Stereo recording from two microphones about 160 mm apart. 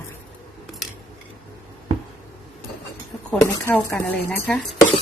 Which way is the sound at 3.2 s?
10° left (ahead or behind).